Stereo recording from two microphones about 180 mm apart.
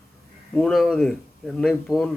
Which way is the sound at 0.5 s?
5° left (ahead or behind).